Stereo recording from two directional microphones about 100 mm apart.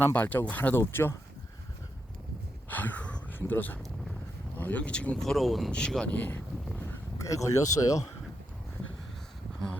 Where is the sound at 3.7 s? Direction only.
Centre (ahead or behind).